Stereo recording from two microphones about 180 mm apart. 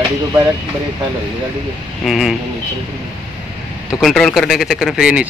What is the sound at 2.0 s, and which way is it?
Speech, centre (ahead or behind).